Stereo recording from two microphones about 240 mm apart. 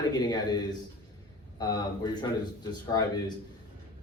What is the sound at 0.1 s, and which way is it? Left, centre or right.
A man's voice, centre.